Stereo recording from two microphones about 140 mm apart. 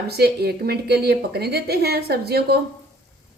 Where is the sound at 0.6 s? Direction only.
90° right.